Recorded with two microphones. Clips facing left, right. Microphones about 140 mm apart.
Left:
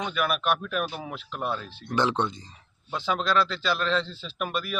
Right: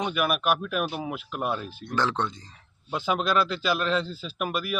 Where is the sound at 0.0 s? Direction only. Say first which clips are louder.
Right 1 dB; 15° right (ahead or behind).